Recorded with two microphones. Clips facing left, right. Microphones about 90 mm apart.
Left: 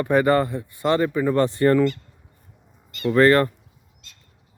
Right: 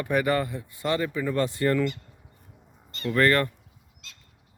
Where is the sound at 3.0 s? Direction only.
30° left (ahead or behind).